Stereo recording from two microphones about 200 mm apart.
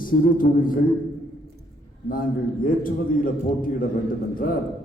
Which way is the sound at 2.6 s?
45° left (ahead or behind).